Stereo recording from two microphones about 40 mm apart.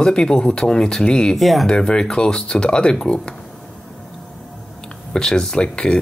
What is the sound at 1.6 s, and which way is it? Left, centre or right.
Speech, centre.